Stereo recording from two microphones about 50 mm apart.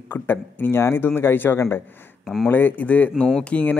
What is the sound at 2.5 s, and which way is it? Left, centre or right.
A man's voice, left.